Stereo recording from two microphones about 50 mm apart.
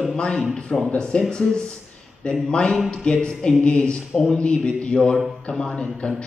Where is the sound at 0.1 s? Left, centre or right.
Centre.